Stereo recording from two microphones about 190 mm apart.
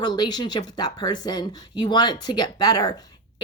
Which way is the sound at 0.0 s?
20° left (ahead or behind).